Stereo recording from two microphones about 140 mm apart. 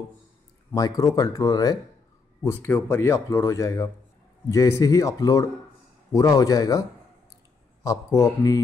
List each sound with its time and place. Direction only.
0.7 s speech: 25° left (ahead or behind)
2.4 s speech: 15° left (ahead or behind)